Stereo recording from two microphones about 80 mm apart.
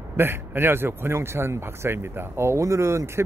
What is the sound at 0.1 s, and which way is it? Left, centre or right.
Speech, right.